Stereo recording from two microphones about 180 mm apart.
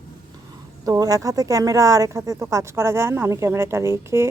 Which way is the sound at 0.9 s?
20° right (ahead or behind).